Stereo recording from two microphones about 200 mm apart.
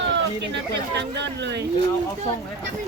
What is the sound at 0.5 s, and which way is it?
Speech, 60° right (ahead or behind).